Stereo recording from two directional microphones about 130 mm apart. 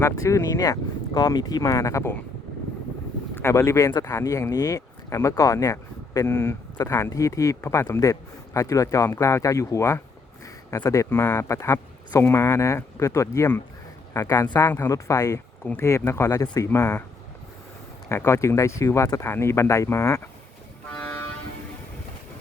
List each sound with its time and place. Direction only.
0.0 s speech: 20° left (ahead or behind)
3.3 s speech: 20° left (ahead or behind)
18.1 s speech: 20° left (ahead or behind)